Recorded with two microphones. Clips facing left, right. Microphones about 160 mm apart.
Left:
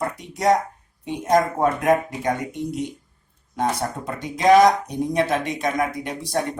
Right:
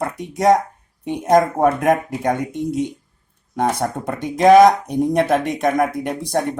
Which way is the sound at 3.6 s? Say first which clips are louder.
Right 4 dB; 60° right (ahead or behind).